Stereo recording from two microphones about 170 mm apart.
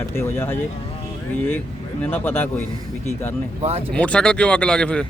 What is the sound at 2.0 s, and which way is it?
Speech, 10° left (ahead or behind).